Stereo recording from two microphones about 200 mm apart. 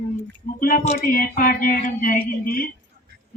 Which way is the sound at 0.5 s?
45° left (ahead or behind).